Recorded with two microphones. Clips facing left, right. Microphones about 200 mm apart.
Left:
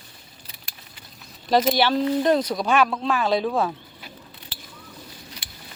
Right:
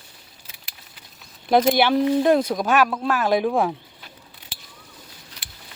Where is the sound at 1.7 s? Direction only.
15° right (ahead or behind).